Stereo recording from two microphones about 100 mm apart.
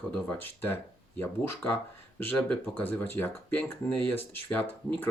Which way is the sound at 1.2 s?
20° left (ahead or behind).